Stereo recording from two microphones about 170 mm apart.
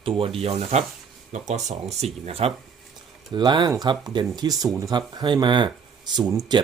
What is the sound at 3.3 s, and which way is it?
Speech, 25° right (ahead or behind).